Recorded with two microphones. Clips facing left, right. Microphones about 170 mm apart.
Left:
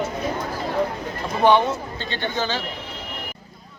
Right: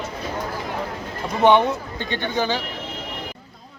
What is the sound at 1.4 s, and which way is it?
Speech, 20° right (ahead or behind).